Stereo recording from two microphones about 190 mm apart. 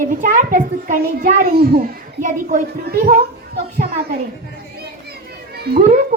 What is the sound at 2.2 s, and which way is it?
Speech, 40° right (ahead or behind).